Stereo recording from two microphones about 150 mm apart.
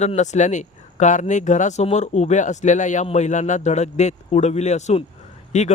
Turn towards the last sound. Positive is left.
turn(degrees=50)  # may be behind; listen again after turning